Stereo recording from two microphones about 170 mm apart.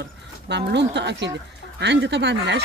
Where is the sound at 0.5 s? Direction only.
90° right.